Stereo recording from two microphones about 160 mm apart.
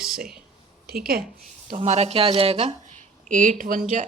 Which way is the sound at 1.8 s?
45° right (ahead or behind).